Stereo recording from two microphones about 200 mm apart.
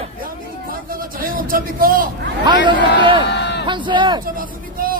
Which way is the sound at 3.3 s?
60° left (ahead or behind).